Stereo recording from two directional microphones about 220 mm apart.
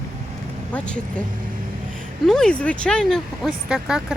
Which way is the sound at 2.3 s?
5° left (ahead or behind).